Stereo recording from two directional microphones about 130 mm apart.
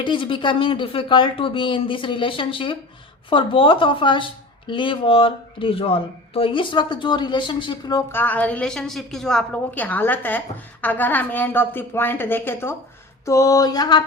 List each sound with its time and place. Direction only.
0.0 s speech: 40° left (ahead or behind)
8.1 s a woman's voice: 15° left (ahead or behind)
13.2 s a sound: 25° left (ahead or behind)